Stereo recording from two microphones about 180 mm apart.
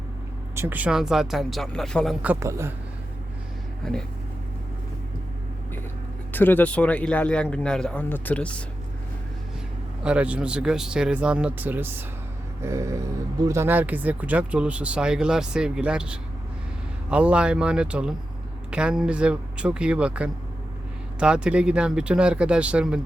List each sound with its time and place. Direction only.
0.5 s speech: 10° right (ahead or behind)
2.2 s speech: 15° right (ahead or behind)
3.8 s speech: 5° left (ahead or behind)
6.3 s speech: 10° left (ahead or behind)
10.0 s speech: 5° right (ahead or behind)